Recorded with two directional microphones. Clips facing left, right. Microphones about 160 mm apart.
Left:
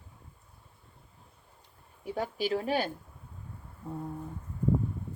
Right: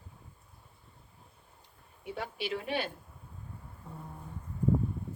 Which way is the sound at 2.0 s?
40° left (ahead or behind).